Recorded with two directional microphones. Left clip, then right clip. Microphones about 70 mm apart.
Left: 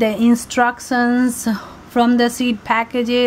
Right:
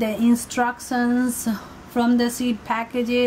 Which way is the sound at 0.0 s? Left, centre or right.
Left.